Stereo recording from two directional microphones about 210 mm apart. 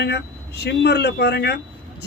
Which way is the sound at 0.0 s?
50° left (ahead or behind).